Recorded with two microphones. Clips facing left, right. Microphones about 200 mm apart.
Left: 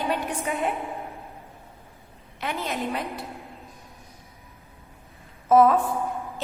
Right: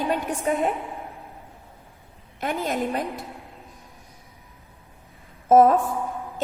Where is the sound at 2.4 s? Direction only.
45° right (ahead or behind).